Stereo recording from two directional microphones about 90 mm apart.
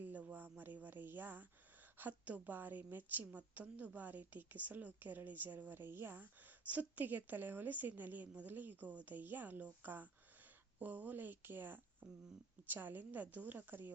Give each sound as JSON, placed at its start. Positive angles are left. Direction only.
{"t": 0.0, "sound": "a woman's voice", "side_deg": -20}